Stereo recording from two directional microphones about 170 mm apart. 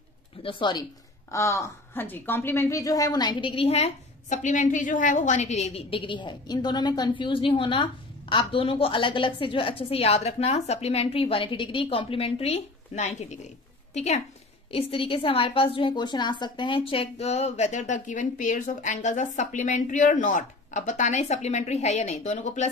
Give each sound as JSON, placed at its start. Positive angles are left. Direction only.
{"t": 0.4, "sound": "a woman's voice", "side_deg": 30}